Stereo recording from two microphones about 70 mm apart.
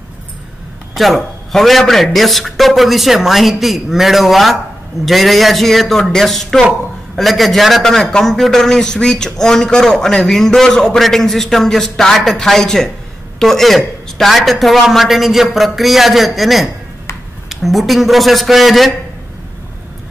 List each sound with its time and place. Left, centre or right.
0.9 s a man's voice: centre